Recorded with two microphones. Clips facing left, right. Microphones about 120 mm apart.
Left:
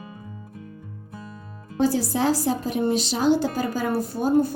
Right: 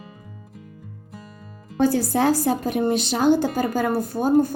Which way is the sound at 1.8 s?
55° right (ahead or behind).